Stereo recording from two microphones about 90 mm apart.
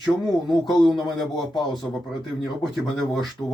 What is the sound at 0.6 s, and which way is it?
Speech, centre (ahead or behind).